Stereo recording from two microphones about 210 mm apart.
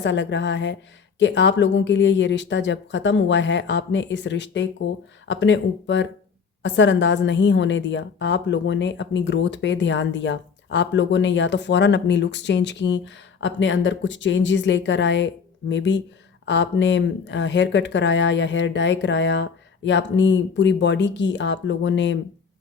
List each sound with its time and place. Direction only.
0.0 s a woman's voice: 55° left (ahead or behind)